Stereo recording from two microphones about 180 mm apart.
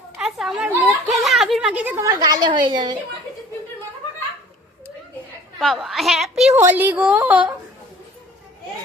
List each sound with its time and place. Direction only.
0.2 s a sound: centre (ahead or behind)
2.0 s a woman's voice: 20° right (ahead or behind)
5.5 s a woman's voice: centre (ahead or behind)
6.6 s a woman's voice: 10° right (ahead or behind)